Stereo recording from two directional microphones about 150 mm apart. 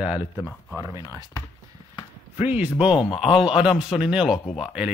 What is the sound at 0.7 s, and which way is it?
Speech, 20° right (ahead or behind).